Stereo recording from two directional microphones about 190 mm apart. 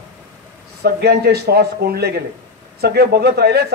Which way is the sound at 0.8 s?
55° right (ahead or behind).